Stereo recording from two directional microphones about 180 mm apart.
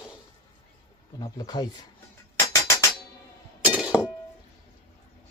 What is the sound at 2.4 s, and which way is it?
Music, 15° left (ahead or behind).